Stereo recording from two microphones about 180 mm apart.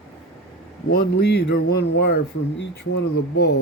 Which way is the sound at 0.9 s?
60° left (ahead or behind).